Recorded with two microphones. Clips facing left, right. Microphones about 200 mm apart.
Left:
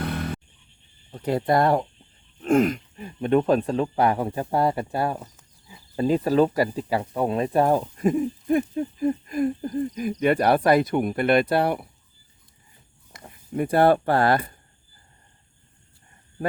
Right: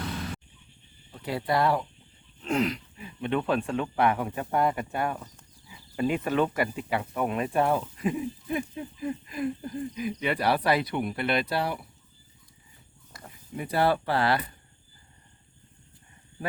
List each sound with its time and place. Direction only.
0.0 s music: 60° left (ahead or behind)
1.1 s speech: 45° left (ahead or behind)
13.6 s speech: 50° left (ahead or behind)